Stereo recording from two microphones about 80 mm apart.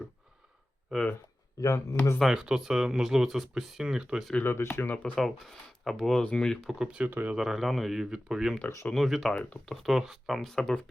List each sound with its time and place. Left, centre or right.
0.9 s speech: centre
1.6 s speech: left
2.3 s speech: centre
4.4 s speech: left
5.0 s speech: centre
6.7 s speech: centre
7.1 s speech: right
7.3 s speech: centre
9.3 s speech: centre
9.8 s speech: centre